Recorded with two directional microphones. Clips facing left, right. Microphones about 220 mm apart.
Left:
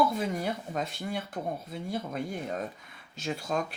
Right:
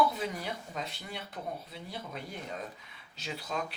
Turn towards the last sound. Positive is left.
turn(degrees=45)  # may be behind; listen again after turning